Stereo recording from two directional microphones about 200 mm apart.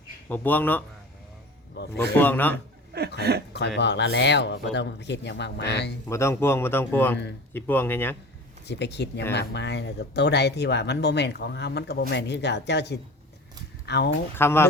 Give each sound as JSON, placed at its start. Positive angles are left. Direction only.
{"t": 0.3, "sound": "a man's voice", "side_deg": 10}
{"t": 1.7, "sound": "speech", "side_deg": 55}
{"t": 2.1, "sound": "a man's voice", "side_deg": 10}
{"t": 3.2, "sound": "speech", "side_deg": -55}
{"t": 3.8, "sound": "speech", "side_deg": 60}
{"t": 6.1, "sound": "a man's voice", "side_deg": 15}
{"t": 8.6, "sound": "speech", "side_deg": 60}
{"t": 14.3, "sound": "a man's voice", "side_deg": 10}